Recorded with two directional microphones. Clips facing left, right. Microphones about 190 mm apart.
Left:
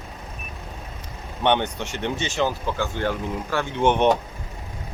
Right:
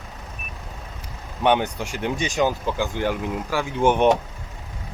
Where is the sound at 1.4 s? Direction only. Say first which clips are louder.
Right 1 dB; 5° right (ahead or behind).